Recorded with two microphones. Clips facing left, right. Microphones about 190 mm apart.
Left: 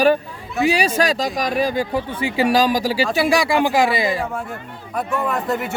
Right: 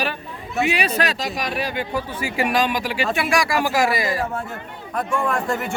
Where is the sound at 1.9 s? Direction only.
25° left (ahead or behind).